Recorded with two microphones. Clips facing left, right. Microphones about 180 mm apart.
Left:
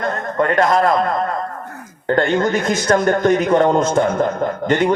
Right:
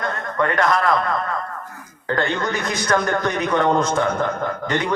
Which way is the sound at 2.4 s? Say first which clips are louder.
Left 6 dB; 25° left (ahead or behind).